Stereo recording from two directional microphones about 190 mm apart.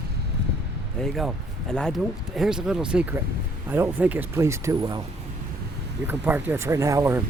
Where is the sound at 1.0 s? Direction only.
Centre (ahead or behind); by 5.0 s 15° right (ahead or behind).